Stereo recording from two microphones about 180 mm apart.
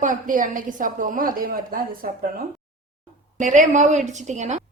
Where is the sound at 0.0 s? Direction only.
45° right (ahead or behind).